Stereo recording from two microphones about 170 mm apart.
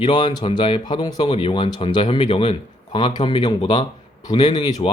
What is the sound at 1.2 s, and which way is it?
Speech, 35° left (ahead or behind).